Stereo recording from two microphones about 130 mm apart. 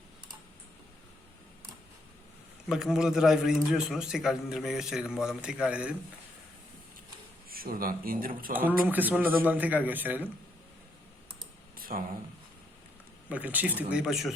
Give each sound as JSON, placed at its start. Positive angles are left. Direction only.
{"t": 2.6, "sound": "a man's voice", "side_deg": -5}
{"t": 7.6, "sound": "speech", "side_deg": -90}
{"t": 8.5, "sound": "speech", "side_deg": -15}
{"t": 11.8, "sound": "a sound", "side_deg": -90}
{"t": 13.3, "sound": "speech", "side_deg": -10}